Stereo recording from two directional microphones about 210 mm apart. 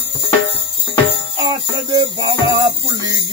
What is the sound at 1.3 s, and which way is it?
Music, 20° right (ahead or behind).